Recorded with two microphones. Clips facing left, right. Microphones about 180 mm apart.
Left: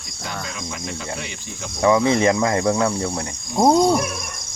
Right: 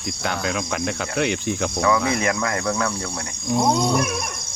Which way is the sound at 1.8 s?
25° left (ahead or behind).